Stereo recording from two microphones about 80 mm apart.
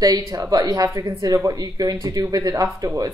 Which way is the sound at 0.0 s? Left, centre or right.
Right.